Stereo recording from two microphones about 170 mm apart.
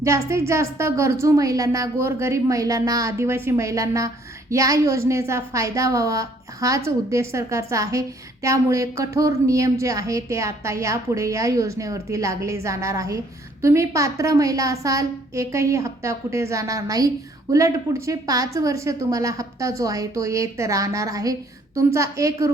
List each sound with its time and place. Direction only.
0.0 s a woman's voice: 15° right (ahead or behind)